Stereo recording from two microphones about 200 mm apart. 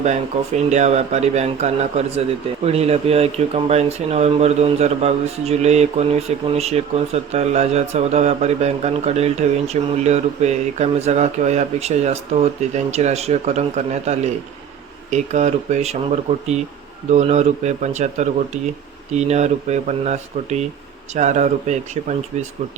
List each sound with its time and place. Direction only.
0.0 s speech: 35° right (ahead or behind)